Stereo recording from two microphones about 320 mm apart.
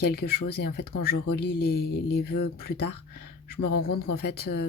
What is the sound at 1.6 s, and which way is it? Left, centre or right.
Speech, left.